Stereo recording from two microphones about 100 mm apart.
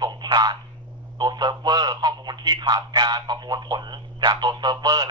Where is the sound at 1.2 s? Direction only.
45° right (ahead or behind).